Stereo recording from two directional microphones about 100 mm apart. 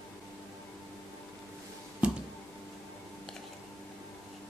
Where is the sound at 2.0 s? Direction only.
10° right (ahead or behind).